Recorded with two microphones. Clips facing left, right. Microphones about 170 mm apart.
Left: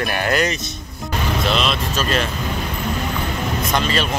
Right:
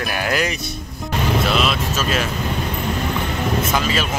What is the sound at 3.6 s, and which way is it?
Speech, 5° right (ahead or behind).